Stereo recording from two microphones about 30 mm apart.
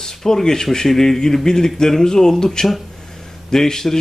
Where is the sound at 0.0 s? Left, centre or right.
Centre.